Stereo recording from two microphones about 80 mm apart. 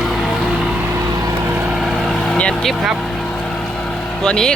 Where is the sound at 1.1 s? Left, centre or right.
Right.